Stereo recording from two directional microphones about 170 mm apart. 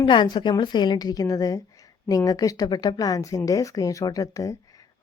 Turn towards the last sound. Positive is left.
turn(degrees=20)  # may be behind; listen again after turning